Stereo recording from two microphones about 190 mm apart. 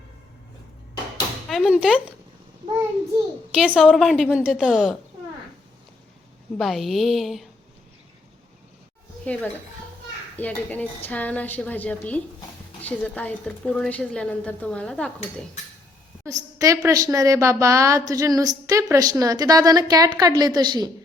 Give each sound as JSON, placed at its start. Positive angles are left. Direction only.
{"t": 1.5, "sound": "speech", "side_deg": 0}
{"t": 3.5, "sound": "a woman's voice", "side_deg": -5}
{"t": 6.6, "sound": "a woman's voice", "side_deg": 0}
{"t": 9.2, "sound": "a woman's voice", "side_deg": 5}
{"t": 16.2, "sound": "a woman's voice", "side_deg": -15}